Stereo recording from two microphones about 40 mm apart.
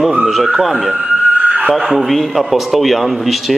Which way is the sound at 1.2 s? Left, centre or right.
Right.